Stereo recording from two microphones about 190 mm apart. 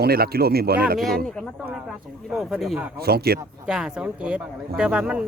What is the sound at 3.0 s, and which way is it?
Speech, 55° right (ahead or behind).